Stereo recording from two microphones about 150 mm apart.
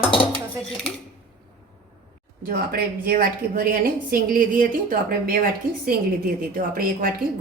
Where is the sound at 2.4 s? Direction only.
90° right.